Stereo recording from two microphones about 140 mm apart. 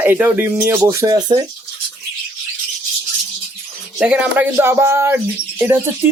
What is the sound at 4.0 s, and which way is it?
Speech, 10° right (ahead or behind).